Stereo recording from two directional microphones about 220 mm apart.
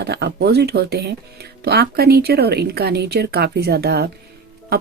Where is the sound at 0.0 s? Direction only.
50° right (ahead or behind).